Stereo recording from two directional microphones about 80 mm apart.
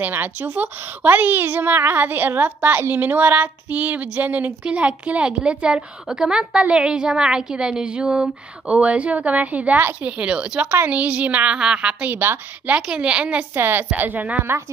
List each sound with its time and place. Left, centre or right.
0.0 s a woman's voice: right